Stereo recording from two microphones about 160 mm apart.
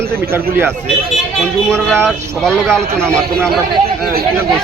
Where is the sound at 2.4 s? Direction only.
5° left (ahead or behind).